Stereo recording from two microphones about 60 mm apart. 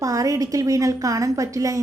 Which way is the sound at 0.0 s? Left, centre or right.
Right.